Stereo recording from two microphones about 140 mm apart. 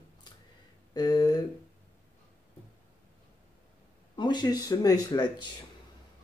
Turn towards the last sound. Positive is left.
turn(degrees=30)  # may be behind; listen again after turning